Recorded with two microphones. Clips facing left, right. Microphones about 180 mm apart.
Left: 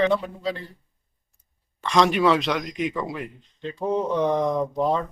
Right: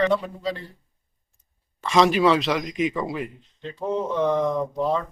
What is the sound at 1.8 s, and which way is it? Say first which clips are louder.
Speech: right 1 dB; centre (ahead or behind).